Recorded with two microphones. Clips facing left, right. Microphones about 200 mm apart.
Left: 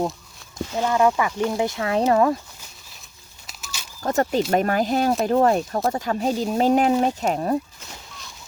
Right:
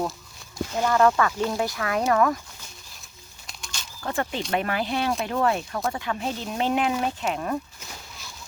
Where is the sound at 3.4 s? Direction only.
5° left (ahead or behind).